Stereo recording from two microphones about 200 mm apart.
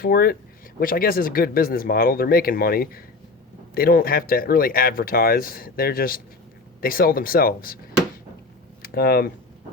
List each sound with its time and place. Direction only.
0.0 s speech: 50° left (ahead or behind)
8.8 s speech: 50° left (ahead or behind)